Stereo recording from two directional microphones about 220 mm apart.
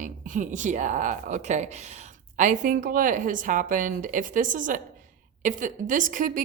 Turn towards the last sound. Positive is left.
turn(degrees=-35)  # may be behind; listen again after turning